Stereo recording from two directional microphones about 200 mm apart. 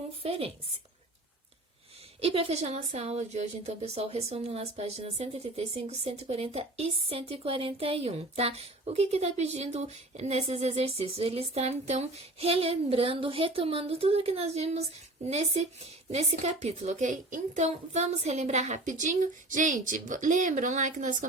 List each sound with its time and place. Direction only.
0.2 s speech: 30° right (ahead or behind)
2.2 s a woman's voice: 30° right (ahead or behind)